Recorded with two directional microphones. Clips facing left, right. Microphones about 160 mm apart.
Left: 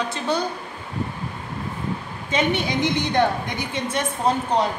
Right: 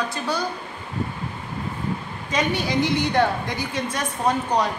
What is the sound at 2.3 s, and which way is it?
A woman's voice, 20° left (ahead or behind).